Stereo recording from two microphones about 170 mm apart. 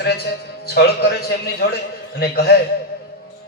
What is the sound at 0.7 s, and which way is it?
A man's voice, 70° left (ahead or behind).